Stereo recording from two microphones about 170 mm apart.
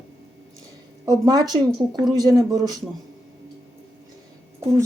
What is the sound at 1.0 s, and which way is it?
Speech, 20° right (ahead or behind).